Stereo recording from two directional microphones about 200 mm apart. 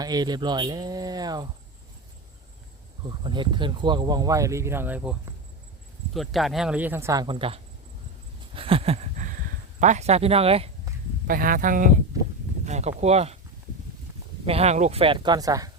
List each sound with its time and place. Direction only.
0.0 s speech: 20° right (ahead or behind)
3.0 s speech: 25° right (ahead or behind)
8.5 s a sound: 25° right (ahead or behind)
9.8 s speech: 35° right (ahead or behind)
11.3 s speech: 45° right (ahead or behind)
14.4 s speech: 30° right (ahead or behind)